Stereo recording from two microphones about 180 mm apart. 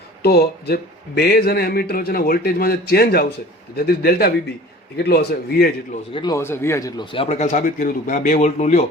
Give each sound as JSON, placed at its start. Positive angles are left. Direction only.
{"t": 0.2, "sound": "speech", "side_deg": 60}
{"t": 6.1, "sound": "speech", "side_deg": 20}